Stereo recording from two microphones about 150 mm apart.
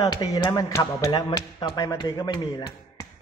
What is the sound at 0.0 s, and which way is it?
Speech, 25° left (ahead or behind).